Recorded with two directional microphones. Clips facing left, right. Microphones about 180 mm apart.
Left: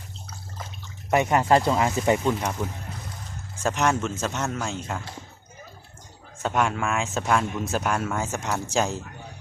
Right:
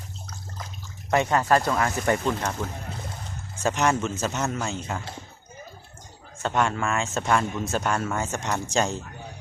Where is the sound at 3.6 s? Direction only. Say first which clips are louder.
Even; centre (ahead or behind).